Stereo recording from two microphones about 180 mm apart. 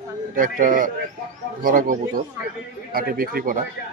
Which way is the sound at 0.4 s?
50° right (ahead or behind).